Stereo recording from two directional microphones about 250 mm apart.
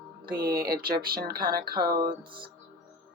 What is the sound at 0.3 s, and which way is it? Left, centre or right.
Speech, right.